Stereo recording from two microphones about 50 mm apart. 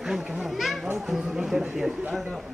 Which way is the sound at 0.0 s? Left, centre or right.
Centre.